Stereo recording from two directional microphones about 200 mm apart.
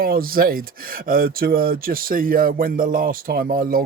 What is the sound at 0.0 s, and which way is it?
Speech, 45° right (ahead or behind).